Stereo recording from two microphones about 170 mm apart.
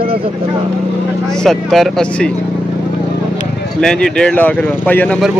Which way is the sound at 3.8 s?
5° left (ahead or behind).